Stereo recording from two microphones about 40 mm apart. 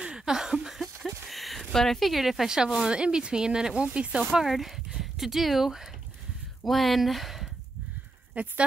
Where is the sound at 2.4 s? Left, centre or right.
Centre.